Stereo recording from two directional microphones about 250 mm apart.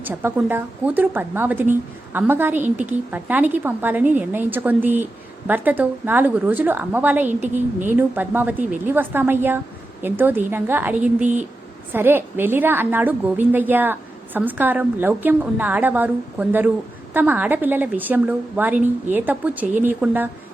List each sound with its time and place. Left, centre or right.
0.0 s a woman's voice: centre
11.2 s speech: right
11.9 s a woman's voice: centre